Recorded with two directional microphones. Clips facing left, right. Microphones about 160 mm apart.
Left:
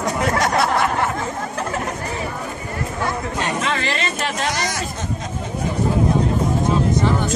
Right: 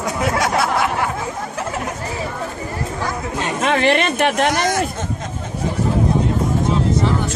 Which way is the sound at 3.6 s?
55° right (ahead or behind).